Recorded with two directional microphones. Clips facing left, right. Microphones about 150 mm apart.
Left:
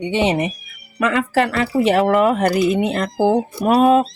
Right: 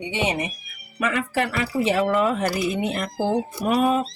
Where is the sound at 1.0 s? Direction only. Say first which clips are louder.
Left 6 dB; 90° left.